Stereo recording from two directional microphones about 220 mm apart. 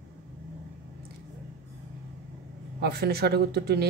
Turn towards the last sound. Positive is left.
turn(degrees=-45)  # may be behind; listen again after turning